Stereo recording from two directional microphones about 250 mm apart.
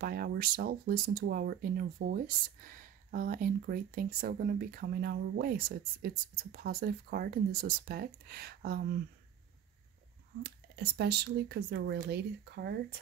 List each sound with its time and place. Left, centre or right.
0.0 s speech: right
10.4 s speech: right